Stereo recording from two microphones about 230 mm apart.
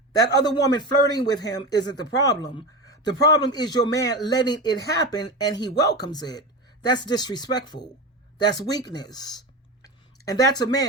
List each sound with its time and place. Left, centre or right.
0.3 s a man's voice: centre
2.8 s a sound: centre
3.5 s a man's voice: centre